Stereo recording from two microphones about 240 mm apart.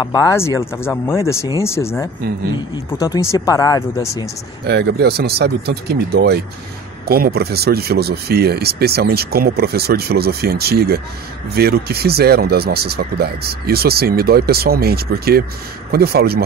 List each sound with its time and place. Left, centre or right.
0.0 s speech: centre
4.6 s speech: right